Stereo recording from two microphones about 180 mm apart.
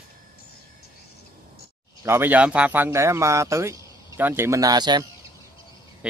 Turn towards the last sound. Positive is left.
turn(degrees=-20)  # may be behind; listen again after turning